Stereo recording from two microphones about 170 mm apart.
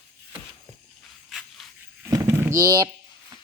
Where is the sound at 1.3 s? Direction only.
Centre (ahead or behind).